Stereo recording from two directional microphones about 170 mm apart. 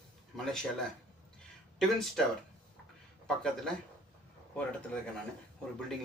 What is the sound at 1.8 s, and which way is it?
Speech, centre (ahead or behind).